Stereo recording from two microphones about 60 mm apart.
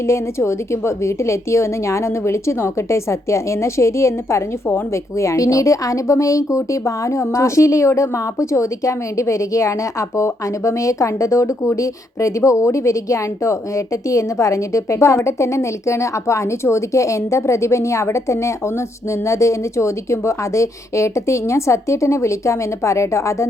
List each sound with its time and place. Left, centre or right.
0.1 s a woman's voice: left